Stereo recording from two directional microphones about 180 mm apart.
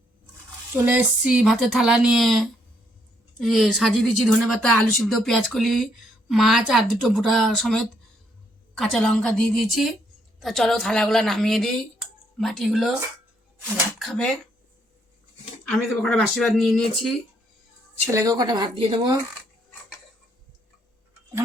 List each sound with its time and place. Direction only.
0.9 s speech: 5° right (ahead or behind)
14.0 s speech: centre (ahead or behind)
15.6 s speech: 5° left (ahead or behind)
18.1 s speech: 20° right (ahead or behind)